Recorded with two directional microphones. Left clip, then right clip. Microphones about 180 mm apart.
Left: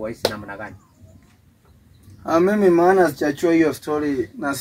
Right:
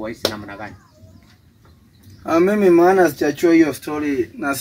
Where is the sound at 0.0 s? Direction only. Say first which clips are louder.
Even; 30° left (ahead or behind).